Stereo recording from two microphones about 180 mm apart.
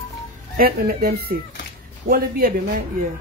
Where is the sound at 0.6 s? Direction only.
55° right (ahead or behind).